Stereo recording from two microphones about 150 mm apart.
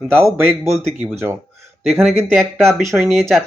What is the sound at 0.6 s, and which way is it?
Speech, 15° right (ahead or behind).